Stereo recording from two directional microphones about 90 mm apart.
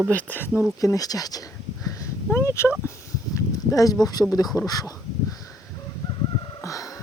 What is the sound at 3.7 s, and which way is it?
Speech, 45° left (ahead or behind).